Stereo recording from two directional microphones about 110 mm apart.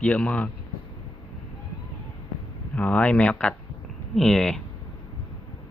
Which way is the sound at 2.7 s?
15° left (ahead or behind).